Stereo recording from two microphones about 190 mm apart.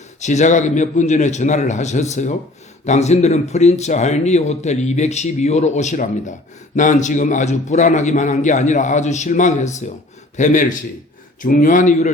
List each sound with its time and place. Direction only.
0.2 s speech: 40° left (ahead or behind)